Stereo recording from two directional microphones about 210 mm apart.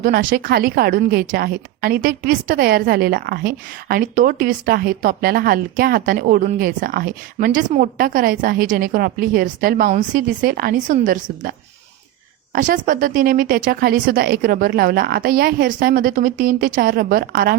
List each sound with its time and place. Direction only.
0.0 s a woman's voice: 40° right (ahead or behind)
12.5 s a woman's voice: 40° right (ahead or behind)